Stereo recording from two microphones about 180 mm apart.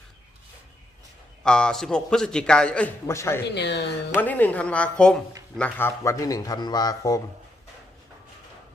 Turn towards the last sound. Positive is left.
turn(degrees=20)  # may be behind; listen again after turning